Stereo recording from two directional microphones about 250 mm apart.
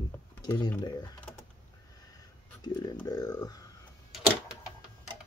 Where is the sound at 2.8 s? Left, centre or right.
Centre.